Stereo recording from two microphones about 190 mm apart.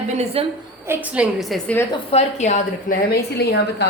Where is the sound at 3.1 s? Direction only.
55° left (ahead or behind).